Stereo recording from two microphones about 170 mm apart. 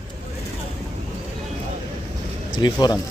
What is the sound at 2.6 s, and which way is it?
Speech, 25° left (ahead or behind).